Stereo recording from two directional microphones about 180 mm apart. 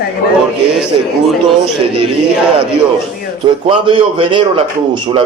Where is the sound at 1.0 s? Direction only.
30° right (ahead or behind).